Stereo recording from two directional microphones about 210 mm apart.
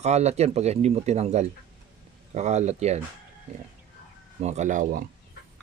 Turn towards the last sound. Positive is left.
turn(degrees=-35)  # may be behind; listen again after turning